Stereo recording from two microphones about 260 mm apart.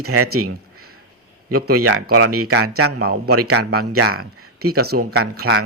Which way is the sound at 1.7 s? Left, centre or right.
Right.